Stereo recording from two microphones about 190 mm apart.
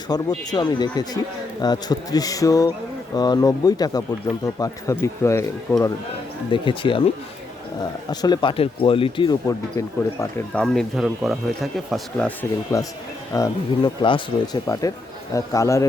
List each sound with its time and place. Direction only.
0.1 s speech: 20° left (ahead or behind)
6.5 s speech: 25° left (ahead or behind)
8.1 s speech: 20° left (ahead or behind); by 12.5 s 5° left (ahead or behind)
12.7 s speech: 15° left (ahead or behind)